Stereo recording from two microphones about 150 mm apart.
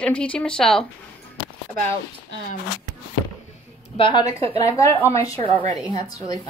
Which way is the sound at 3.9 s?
35° left (ahead or behind).